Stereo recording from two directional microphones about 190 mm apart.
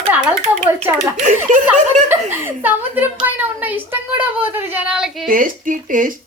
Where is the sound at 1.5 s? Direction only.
45° right (ahead or behind).